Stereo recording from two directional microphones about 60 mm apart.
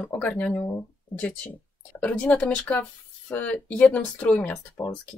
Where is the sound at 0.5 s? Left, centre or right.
Left.